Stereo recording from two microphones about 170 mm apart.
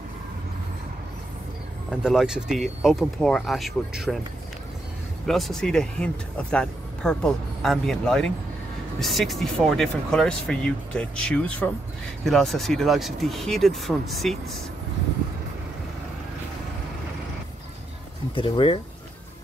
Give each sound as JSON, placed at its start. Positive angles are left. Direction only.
{"t": 1.9, "sound": "speech", "side_deg": -5}
{"t": 5.2, "sound": "speech", "side_deg": 0}
{"t": 18.3, "sound": "speech", "side_deg": 30}